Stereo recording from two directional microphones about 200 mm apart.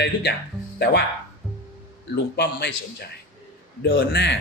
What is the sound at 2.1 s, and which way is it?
Speech, 55° left (ahead or behind).